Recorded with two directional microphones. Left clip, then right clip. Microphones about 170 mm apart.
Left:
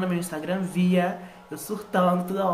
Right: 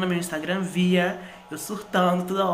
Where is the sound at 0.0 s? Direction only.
5° left (ahead or behind).